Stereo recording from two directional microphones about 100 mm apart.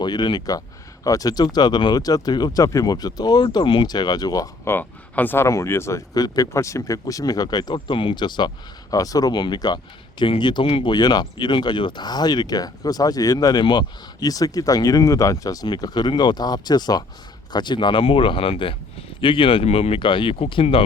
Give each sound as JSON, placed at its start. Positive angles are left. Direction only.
{"t": 0.0, "sound": "speech", "side_deg": 45}
{"t": 4.6, "sound": "speech", "side_deg": 20}
{"t": 10.9, "sound": "speech", "side_deg": 45}